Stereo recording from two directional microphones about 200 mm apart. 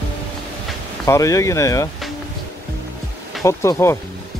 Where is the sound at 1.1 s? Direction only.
15° left (ahead or behind).